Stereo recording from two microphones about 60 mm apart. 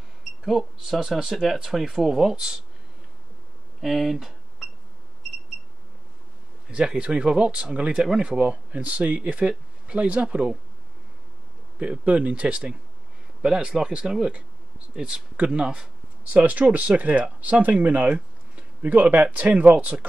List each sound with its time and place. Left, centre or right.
0.5 s speech: centre
3.8 s a sound: centre
6.7 s speech: centre
11.8 s speech: right